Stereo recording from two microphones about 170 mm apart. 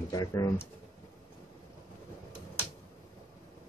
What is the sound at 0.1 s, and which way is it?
Speech, 20° left (ahead or behind).